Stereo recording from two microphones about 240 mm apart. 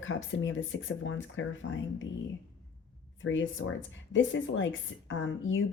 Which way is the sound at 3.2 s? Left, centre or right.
Left.